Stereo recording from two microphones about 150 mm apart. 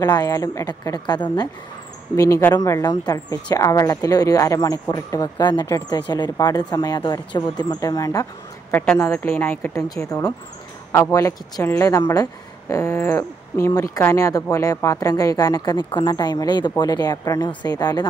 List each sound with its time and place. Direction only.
0.0 s a woman's voice: 25° left (ahead or behind)